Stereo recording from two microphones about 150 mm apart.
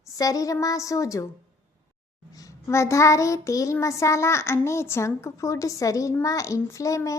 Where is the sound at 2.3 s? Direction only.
25° left (ahead or behind).